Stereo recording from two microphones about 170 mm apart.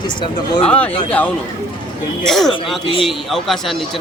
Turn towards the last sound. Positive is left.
turn(degrees=0)  # may be behind; listen again after turning